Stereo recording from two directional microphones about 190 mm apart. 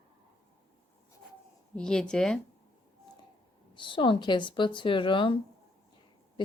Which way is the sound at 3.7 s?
25° left (ahead or behind).